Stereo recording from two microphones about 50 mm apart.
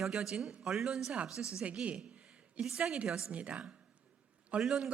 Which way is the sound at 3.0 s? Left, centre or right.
Centre.